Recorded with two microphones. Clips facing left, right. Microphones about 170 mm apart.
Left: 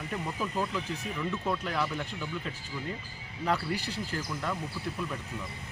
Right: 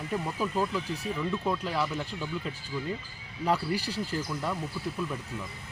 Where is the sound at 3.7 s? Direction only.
35° right (ahead or behind).